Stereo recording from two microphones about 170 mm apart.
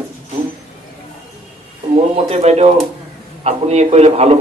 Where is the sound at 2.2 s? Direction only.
40° right (ahead or behind).